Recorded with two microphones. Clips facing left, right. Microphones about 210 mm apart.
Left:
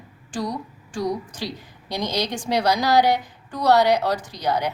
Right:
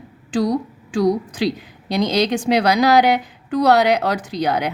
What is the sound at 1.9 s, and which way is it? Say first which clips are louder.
A woman's voice: right 8 dB; 60° right (ahead or behind).